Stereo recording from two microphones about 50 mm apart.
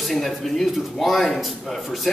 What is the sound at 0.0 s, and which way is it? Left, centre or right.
A man's voice, centre.